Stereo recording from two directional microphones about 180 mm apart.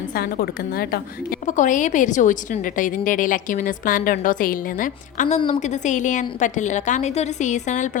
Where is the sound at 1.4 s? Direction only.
45° left (ahead or behind).